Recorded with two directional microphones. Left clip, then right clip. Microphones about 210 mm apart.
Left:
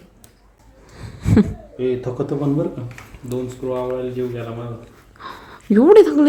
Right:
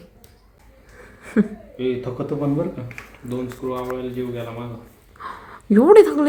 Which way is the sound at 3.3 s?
20° left (ahead or behind).